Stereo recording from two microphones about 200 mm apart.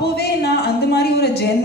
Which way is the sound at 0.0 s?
55° left (ahead or behind).